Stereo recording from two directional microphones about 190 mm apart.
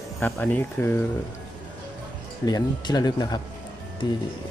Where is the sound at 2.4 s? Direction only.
20° left (ahead or behind).